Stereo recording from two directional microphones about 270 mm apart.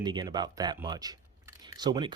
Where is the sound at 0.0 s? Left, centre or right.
Centre.